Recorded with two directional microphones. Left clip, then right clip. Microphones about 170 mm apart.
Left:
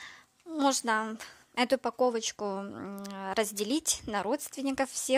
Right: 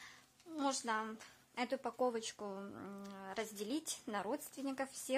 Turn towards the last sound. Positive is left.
turn(degrees=45)  # may be behind; listen again after turning